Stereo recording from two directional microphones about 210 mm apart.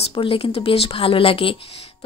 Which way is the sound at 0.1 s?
25° left (ahead or behind).